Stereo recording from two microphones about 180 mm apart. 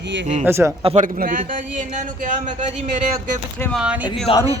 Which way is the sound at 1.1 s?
50° right (ahead or behind).